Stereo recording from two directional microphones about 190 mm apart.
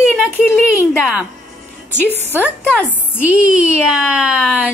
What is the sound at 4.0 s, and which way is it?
Speech, 5° right (ahead or behind).